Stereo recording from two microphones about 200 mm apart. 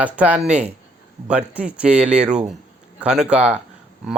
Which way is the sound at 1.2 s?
5° right (ahead or behind).